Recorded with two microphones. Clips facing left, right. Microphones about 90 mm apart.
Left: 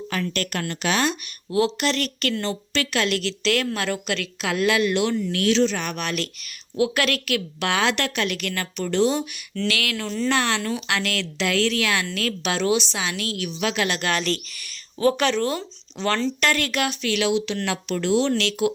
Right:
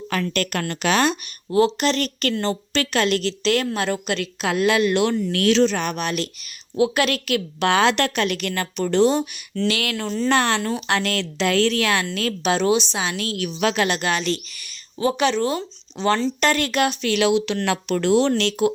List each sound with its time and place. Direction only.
0.1 s a woman's voice: 60° right (ahead or behind)
1.5 s a woman's voice: 35° right (ahead or behind)
4.9 s speech: 50° right (ahead or behind)
6.0 s a woman's voice: 20° right (ahead or behind); by 9.2 s 40° right (ahead or behind)
9.6 s a woman's voice: 25° right (ahead or behind)
10.2 s a woman's voice: 40° right (ahead or behind)
12.0 s a woman's voice: 25° right (ahead or behind); by 13.8 s 40° right (ahead or behind)
13.8 s a woman's voice: 25° right (ahead or behind)
14.1 s speech: 10° right (ahead or behind); by 17.2 s 35° right (ahead or behind)
17.2 s a woman's voice: 60° right (ahead or behind)
17.7 s speech: 50° right (ahead or behind)